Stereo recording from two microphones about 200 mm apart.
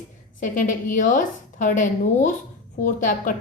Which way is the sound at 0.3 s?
40° left (ahead or behind).